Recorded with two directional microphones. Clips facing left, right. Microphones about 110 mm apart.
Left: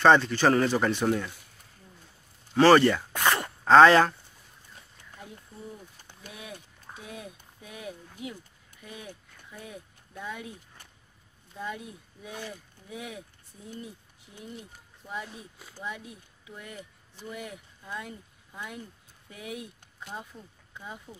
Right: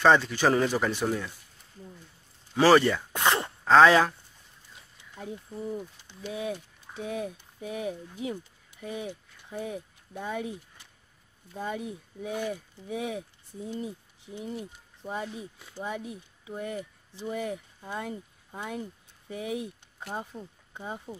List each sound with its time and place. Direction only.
0.0 s speech: 5° right (ahead or behind)
2.5 s speech: 5° right (ahead or behind)
3.1 s a sound: 20° right (ahead or behind)
3.6 s speech: centre (ahead or behind)
6.2 s speech: 25° right (ahead or behind)
11.5 s speech: 30° right (ahead or behind)
16.0 s speech: 25° right (ahead or behind)